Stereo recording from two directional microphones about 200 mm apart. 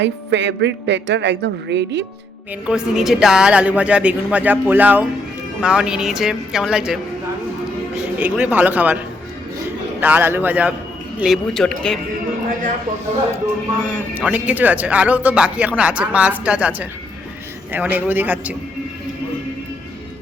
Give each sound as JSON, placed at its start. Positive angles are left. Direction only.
{"t": 0.0, "sound": "a woman's voice", "side_deg": -60}
{"t": 2.6, "sound": "speech", "side_deg": -5}
{"t": 8.2, "sound": "speech", "side_deg": -10}
{"t": 10.0, "sound": "speech", "side_deg": -10}
{"t": 13.9, "sound": "speech", "side_deg": -10}